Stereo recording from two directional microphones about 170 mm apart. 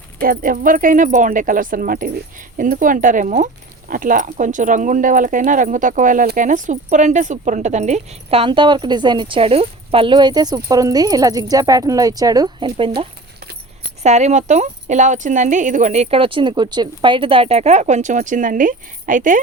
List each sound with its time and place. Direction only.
0.2 s speech: 55° right (ahead or behind); by 12.9 s 30° right (ahead or behind)
14.0 s speech: 40° right (ahead or behind)